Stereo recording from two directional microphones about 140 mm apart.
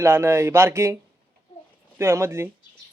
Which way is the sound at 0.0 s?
20° right (ahead or behind).